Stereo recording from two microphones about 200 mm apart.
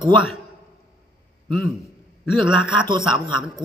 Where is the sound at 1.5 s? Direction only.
Centre (ahead or behind).